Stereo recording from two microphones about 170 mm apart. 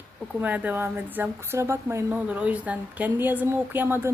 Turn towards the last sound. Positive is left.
turn(degrees=-10)  # may be behind; listen again after turning